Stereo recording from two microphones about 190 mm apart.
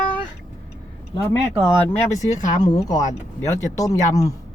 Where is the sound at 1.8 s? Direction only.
15° left (ahead or behind).